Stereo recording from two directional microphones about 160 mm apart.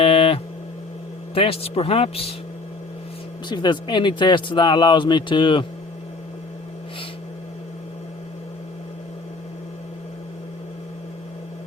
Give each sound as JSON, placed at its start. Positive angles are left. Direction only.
{"t": 0.0, "sound": "a sound", "side_deg": 35}
{"t": 1.3, "sound": "speech", "side_deg": 35}
{"t": 3.5, "sound": "speech", "side_deg": 30}